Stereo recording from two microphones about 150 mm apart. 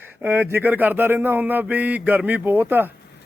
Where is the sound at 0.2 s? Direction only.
15° right (ahead or behind).